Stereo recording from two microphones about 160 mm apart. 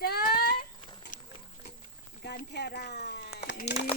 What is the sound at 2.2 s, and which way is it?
Speech, 85° left.